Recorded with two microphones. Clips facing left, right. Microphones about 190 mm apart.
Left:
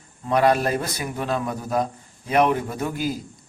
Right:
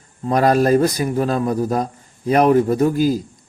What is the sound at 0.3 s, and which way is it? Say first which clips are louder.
A man's voice: right 5 dB; 40° right (ahead or behind).